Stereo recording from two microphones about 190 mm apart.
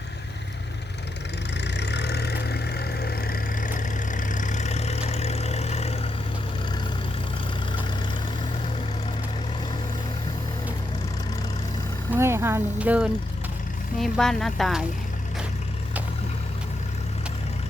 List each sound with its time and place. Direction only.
1.6 s vehicle: 65° left (ahead or behind); by 6.0 s 35° left (ahead or behind)
12.1 s vehicle: 10° right (ahead or behind)
14.0 s speech: centre (ahead or behind)